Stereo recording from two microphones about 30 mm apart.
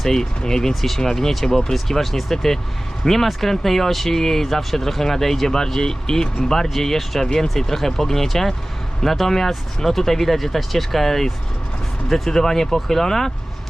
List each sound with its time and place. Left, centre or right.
0.0 s speech: centre
0.7 s speech: centre
0.9 s speech: centre
1.7 s speech: centre
3.0 s speech: left
3.6 s speech: centre